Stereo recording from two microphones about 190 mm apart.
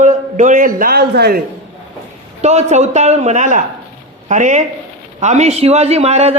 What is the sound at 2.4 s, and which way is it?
A man's voice, 35° right (ahead or behind).